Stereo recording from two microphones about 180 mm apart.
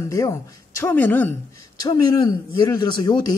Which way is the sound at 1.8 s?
20° left (ahead or behind).